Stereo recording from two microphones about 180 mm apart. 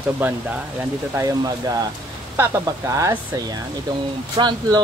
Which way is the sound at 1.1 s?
20° right (ahead or behind).